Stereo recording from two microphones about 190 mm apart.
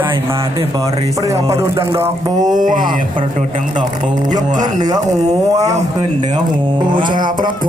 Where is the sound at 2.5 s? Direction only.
45° right (ahead or behind).